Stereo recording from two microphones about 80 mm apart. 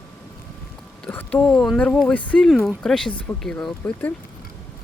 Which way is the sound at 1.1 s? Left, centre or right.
Centre.